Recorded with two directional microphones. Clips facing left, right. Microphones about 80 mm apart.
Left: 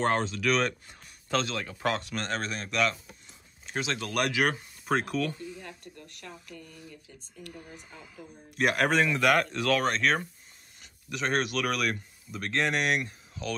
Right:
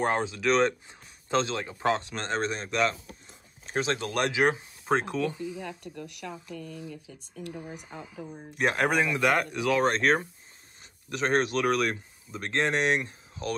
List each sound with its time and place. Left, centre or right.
0.0 s speech: centre
0.5 s speech: right
7.4 s speech: centre
9.8 s speech: right